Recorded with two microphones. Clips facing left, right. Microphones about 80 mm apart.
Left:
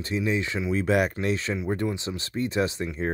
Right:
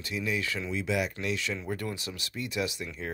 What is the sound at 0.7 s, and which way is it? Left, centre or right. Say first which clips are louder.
Speech: left 9 dB; left.